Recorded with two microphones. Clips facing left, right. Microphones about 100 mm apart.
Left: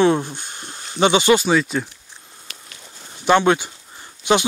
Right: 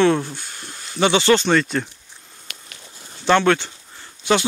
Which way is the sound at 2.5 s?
65° right (ahead or behind).